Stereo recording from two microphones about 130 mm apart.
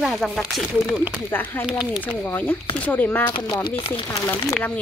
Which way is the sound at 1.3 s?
15° left (ahead or behind).